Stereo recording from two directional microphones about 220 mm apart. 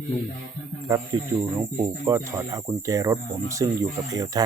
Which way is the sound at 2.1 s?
15° right (ahead or behind).